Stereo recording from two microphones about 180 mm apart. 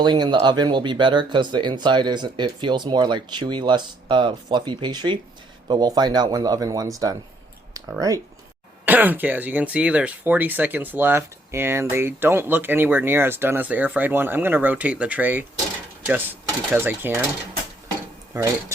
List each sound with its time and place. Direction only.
0.0 s speech: 25° right (ahead or behind)